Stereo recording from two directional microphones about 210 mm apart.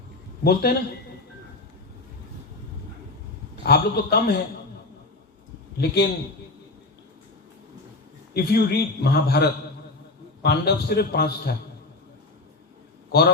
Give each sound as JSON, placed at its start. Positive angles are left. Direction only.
{"t": 0.4, "sound": "a man's voice", "side_deg": 50}
{"t": 3.5, "sound": "a man's voice", "side_deg": 50}
{"t": 5.7, "sound": "a man's voice", "side_deg": 50}
{"t": 8.3, "sound": "a man's voice", "side_deg": 50}
{"t": 13.1, "sound": "a man's voice", "side_deg": 50}